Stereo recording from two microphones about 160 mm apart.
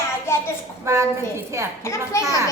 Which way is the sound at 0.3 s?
15° left (ahead or behind).